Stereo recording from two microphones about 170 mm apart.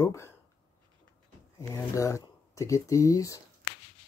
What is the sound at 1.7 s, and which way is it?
Speech, 20° left (ahead or behind).